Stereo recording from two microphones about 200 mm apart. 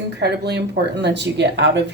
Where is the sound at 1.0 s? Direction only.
60° right (ahead or behind).